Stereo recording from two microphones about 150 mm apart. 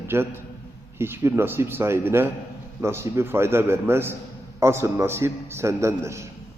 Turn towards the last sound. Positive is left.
turn(degrees=-20)  # may be behind; listen again after turning